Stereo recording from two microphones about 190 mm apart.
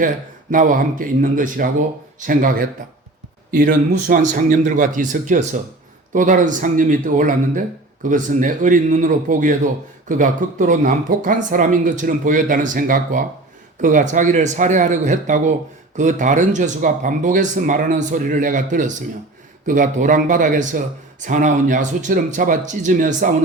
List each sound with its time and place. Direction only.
0.5 s a man's voice: 45° right (ahead or behind)